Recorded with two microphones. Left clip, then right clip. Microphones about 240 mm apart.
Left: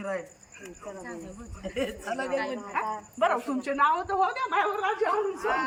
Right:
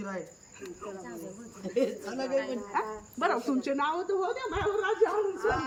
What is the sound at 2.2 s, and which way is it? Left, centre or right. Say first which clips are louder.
Speech: right 2 dB; left.